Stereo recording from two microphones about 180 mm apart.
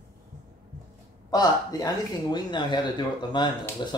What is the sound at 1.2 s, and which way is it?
Speech, 20° left (ahead or behind).